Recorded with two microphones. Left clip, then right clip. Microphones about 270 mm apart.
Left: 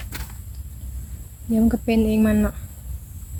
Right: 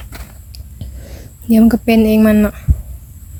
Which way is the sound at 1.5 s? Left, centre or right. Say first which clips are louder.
Right 9 dB; right.